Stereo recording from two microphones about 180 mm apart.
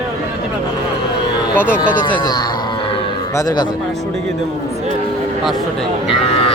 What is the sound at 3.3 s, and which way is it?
Speech, 20° left (ahead or behind).